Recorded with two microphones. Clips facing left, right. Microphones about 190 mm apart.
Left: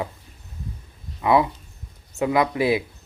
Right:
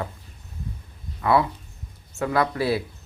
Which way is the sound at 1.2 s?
15° left (ahead or behind).